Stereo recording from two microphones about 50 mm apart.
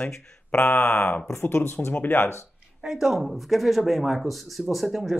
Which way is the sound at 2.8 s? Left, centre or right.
Centre.